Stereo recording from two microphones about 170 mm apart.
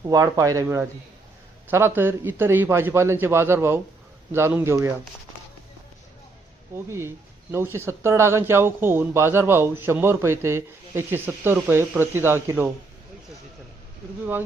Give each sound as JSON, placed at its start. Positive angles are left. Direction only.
{"t": 0.0, "sound": "speech", "side_deg": -20}
{"t": 7.5, "sound": "speech", "side_deg": -15}